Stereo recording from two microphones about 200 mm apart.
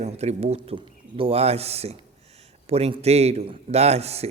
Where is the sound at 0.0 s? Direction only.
30° right (ahead or behind).